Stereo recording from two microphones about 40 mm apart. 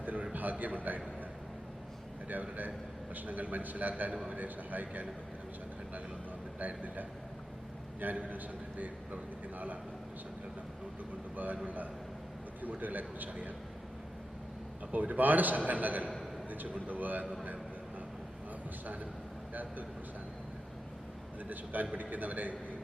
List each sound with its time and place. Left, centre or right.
0.0 s a sound: right
0.3 s a man's voice: right
2.3 s a man's voice: right
6.6 s a man's voice: right
8.0 s a man's voice: right
11.6 s a man's voice: right
14.9 s a man's voice: right
21.5 s a man's voice: right